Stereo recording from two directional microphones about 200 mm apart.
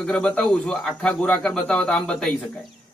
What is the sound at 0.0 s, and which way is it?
Speech, 5° left (ahead or behind).